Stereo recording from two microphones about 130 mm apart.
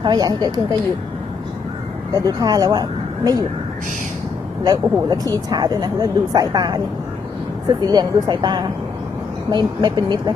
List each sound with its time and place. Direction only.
0.0 s speech: 30° right (ahead or behind)
2.1 s speech: 30° right (ahead or behind)
4.6 s speech: 30° right (ahead or behind)